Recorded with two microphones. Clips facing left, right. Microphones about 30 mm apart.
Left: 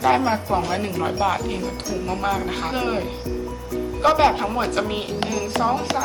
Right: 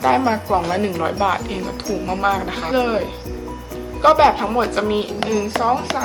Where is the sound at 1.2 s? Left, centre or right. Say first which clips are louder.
Right 2 dB; centre.